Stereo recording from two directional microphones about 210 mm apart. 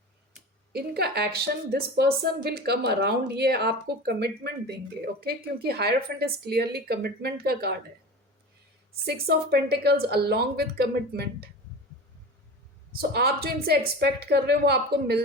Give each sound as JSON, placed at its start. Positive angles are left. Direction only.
{"t": 0.7, "sound": "a woman's voice", "side_deg": -50}
{"t": 9.0, "sound": "a woman's voice", "side_deg": -50}
{"t": 13.0, "sound": "a woman's voice", "side_deg": -50}